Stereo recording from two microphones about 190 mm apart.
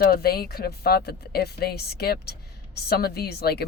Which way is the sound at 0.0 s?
55° left (ahead or behind).